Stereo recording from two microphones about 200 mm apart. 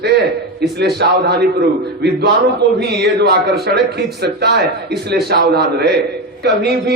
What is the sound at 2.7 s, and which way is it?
A man's voice, 55° right (ahead or behind).